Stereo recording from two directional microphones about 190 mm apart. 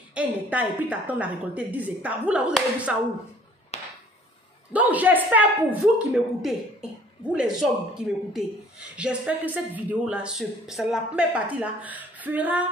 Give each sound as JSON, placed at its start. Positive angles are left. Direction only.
{"t": 0.1, "sound": "speech", "side_deg": -10}
{"t": 3.7, "sound": "a sound", "side_deg": 35}
{"t": 4.7, "sound": "speech", "side_deg": -10}